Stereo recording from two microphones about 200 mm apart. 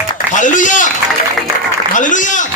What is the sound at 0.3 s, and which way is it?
Speech, 40° left (ahead or behind).